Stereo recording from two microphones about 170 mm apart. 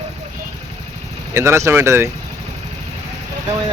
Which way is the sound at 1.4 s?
15° right (ahead or behind).